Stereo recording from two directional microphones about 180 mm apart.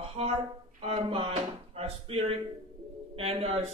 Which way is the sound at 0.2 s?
30° right (ahead or behind).